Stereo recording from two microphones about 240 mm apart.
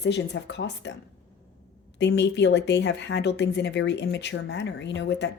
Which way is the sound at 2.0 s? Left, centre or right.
Left.